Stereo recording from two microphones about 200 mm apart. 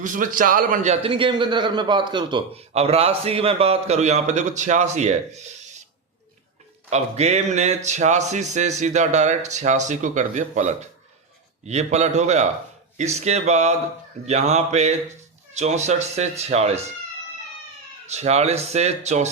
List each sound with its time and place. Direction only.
0.0 s a man's voice: 40° right (ahead or behind)
6.9 s a man's voice: 35° right (ahead or behind)
18.1 s a man's voice: 35° right (ahead or behind)